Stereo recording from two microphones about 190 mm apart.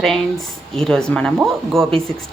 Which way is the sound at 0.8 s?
5° left (ahead or behind).